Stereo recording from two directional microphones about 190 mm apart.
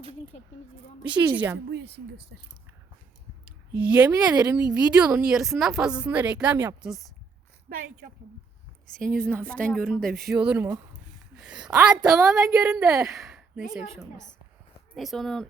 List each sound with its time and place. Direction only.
1.0 s a woman's voice: 10° right (ahead or behind)
1.7 s speech: 60° right (ahead or behind)
3.7 s speech: 5° right (ahead or behind)
7.7 s a woman's voice: 50° right (ahead or behind)
9.1 s speech: 5° left (ahead or behind)
12.4 s a woman's voice: 20° right (ahead or behind)
12.6 s a woman's voice: 5° right (ahead or behind)
14.9 s speech: centre (ahead or behind)